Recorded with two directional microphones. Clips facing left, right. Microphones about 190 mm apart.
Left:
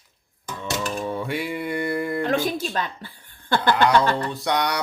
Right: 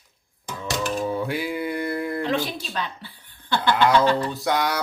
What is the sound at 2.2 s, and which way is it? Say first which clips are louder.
Chuckle: left 3 dB; 50° left (ahead or behind).